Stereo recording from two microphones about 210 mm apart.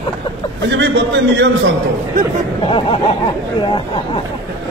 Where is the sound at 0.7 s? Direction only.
60° right (ahead or behind).